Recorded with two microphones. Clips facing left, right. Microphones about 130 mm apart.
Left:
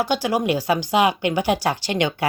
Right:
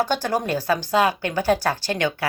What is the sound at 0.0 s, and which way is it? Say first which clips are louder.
A woman's voice: left 2 dB; 10° left (ahead or behind).